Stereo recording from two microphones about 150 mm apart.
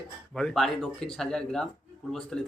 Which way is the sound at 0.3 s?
5° left (ahead or behind).